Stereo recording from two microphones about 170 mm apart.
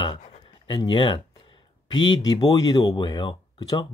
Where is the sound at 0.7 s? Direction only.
25° left (ahead or behind).